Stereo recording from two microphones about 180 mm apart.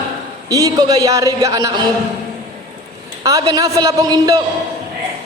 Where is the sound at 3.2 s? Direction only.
20° right (ahead or behind).